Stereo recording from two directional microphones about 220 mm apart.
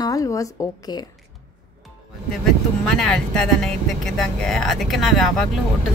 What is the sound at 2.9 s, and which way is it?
Speech, centre (ahead or behind).